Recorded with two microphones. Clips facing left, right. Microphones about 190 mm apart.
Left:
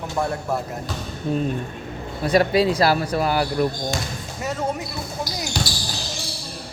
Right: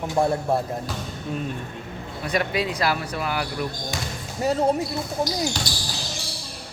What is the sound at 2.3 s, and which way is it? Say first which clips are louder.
Speech: left 7 dB; 35° left (ahead or behind).